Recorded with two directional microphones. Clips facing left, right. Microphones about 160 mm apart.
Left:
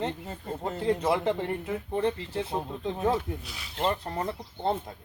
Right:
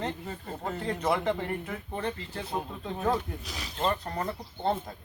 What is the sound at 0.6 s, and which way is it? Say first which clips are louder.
Speech: left 4 dB; 25° left (ahead or behind).